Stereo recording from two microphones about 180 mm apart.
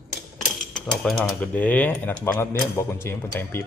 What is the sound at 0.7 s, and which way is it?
Speech, 5° left (ahead or behind).